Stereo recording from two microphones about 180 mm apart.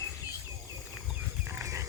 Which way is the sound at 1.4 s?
15° right (ahead or behind).